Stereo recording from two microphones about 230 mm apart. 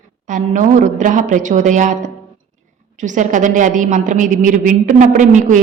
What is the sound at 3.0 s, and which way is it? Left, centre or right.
A woman's voice, right.